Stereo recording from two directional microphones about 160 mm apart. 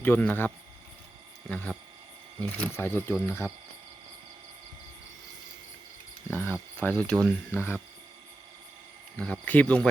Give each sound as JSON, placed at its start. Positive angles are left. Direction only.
{"t": 0.0, "sound": "speech", "side_deg": 10}
{"t": 6.3, "sound": "speech", "side_deg": 15}
{"t": 9.1, "sound": "speech", "side_deg": 5}